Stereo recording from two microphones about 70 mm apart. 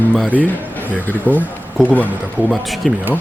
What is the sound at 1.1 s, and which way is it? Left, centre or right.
Speech, left.